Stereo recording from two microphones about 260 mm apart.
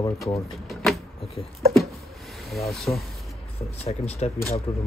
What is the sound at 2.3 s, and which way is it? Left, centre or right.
Speech, centre.